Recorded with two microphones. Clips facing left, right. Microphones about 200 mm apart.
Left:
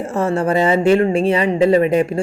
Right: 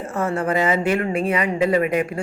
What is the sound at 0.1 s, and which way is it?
Speech, 30° left (ahead or behind).